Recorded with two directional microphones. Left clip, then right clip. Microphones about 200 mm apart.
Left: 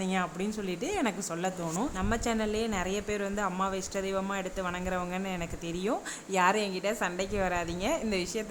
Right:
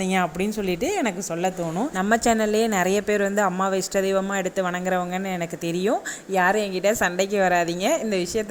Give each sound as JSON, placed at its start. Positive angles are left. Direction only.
{"t": 0.0, "sound": "a woman's voice", "side_deg": -25}
{"t": 2.0, "sound": "a woman's voice", "side_deg": -30}